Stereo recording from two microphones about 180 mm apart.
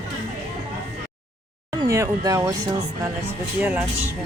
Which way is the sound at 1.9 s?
20° right (ahead or behind).